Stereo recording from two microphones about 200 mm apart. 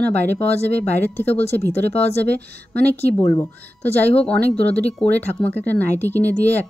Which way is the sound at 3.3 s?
10° left (ahead or behind).